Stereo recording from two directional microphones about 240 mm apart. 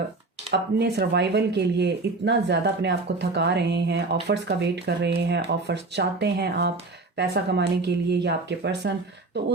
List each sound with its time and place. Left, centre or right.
0.5 s speech: right